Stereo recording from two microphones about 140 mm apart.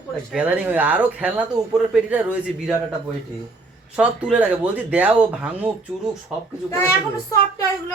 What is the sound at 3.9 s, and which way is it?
Speech, 10° right (ahead or behind).